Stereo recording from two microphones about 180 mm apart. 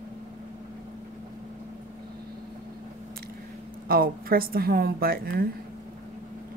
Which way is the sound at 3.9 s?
55° right (ahead or behind).